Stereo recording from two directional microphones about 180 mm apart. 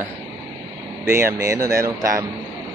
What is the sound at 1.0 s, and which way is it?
Speech, 15° right (ahead or behind).